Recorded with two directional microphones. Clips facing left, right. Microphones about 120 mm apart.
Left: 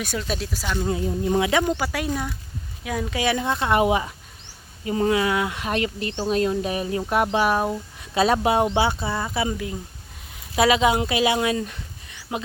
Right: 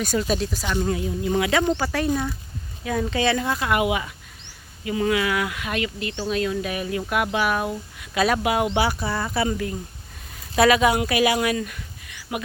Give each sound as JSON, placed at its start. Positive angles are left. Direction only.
{"t": 0.0, "sound": "speech", "side_deg": 0}
{"t": 1.0, "sound": "speech", "side_deg": 30}